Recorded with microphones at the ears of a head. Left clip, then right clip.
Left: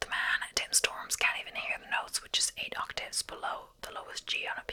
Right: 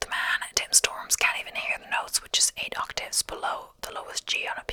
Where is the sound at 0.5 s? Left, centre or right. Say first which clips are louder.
Right 6 dB; right.